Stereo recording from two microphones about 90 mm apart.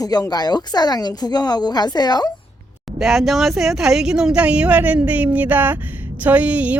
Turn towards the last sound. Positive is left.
turn(degrees=-15)  # may be behind; listen again after turning